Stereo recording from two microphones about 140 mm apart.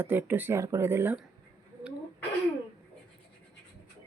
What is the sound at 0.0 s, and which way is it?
Speech, 15° right (ahead or behind).